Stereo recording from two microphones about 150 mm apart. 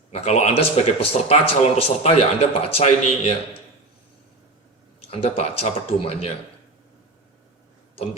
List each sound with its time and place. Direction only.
0.1 s speech: 45° left (ahead or behind)
5.1 s speech: 45° left (ahead or behind)